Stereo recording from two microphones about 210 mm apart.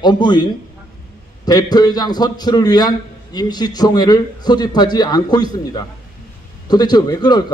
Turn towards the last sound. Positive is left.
turn(degrees=20)  # may be behind; listen again after turning